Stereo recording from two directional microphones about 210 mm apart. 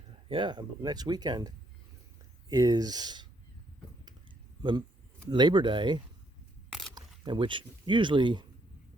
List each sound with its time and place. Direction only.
0.3 s speech: 25° right (ahead or behind)
5.3 s speech: 20° right (ahead or behind)